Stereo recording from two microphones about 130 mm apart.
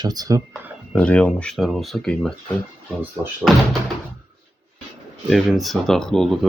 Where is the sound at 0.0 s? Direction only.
30° right (ahead or behind).